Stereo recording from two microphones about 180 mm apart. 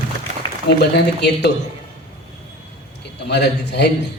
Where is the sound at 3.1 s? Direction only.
70° left (ahead or behind).